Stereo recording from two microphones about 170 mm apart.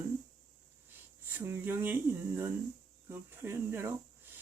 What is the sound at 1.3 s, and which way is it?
Speech, 15° right (ahead or behind).